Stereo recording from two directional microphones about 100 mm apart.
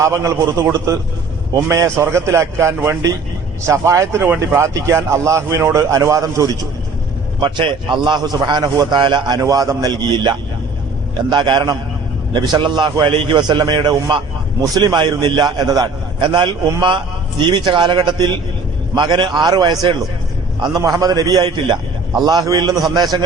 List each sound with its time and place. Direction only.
0.0 s speech: 30° right (ahead or behind)
1.7 s speech: 30° right (ahead or behind)
7.3 s a man's voice: 50° right (ahead or behind)
9.4 s a man's voice: 35° right (ahead or behind)
16.2 s a man's voice: 50° right (ahead or behind)